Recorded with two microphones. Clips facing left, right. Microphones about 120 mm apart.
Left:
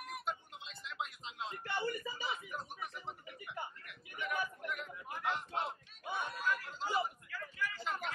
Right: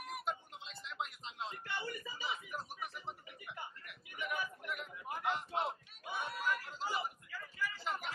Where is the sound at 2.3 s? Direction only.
5° right (ahead or behind).